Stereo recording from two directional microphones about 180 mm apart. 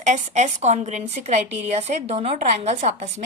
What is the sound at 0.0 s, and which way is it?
A woman's voice, 40° right (ahead or behind).